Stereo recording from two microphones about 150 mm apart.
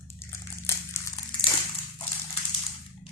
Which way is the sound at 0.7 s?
20° left (ahead or behind).